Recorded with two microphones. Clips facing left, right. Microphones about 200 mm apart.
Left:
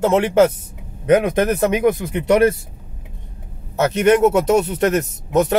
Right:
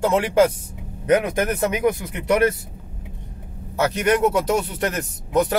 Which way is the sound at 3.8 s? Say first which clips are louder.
Left 5 dB; 25° left (ahead or behind).